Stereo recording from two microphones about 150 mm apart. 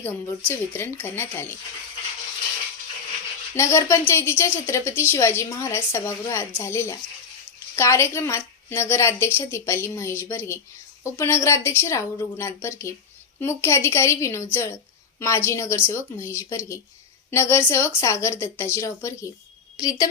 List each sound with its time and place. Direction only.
0.0 s a woman's voice: 15° left (ahead or behind)
3.5 s a woman's voice: 15° left (ahead or behind)